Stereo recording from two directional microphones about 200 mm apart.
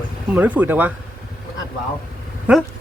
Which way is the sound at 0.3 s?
10° right (ahead or behind).